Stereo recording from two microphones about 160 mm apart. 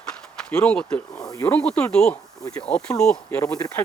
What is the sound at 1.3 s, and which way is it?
Speech, 20° left (ahead or behind).